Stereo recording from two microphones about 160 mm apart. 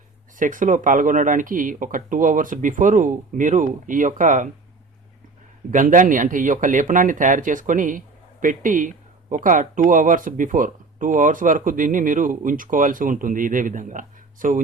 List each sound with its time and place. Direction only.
0.3 s speech: 55° right (ahead or behind)
5.7 s speech: 55° right (ahead or behind)